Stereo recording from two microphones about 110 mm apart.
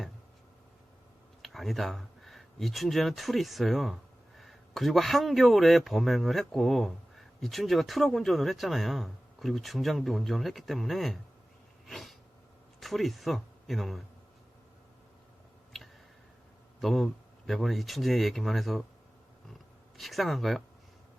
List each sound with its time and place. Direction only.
1.4 s speech: centre (ahead or behind)
11.9 s a sound: centre (ahead or behind)
12.8 s speech: centre (ahead or behind)
16.8 s speech: centre (ahead or behind)
20.0 s speech: centre (ahead or behind)